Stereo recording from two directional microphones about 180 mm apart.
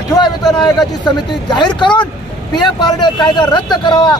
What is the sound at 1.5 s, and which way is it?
Speech, 25° left (ahead or behind).